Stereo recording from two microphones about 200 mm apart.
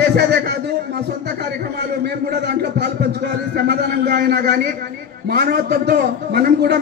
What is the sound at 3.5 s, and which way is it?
A man's voice, 55° right (ahead or behind).